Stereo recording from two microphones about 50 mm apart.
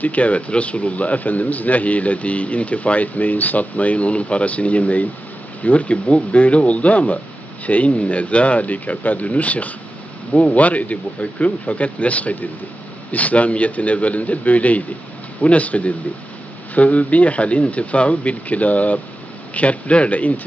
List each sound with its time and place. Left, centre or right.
0.0 s a man's voice: left